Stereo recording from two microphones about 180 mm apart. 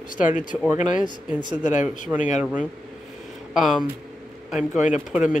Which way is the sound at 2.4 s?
5° right (ahead or behind).